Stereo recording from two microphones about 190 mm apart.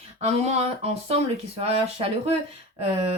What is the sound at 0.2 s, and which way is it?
Speech, 35° right (ahead or behind).